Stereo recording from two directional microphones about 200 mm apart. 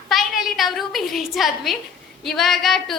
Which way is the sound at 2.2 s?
Centre (ahead or behind).